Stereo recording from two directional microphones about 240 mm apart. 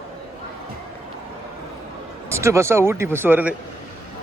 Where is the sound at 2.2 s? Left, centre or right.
Centre.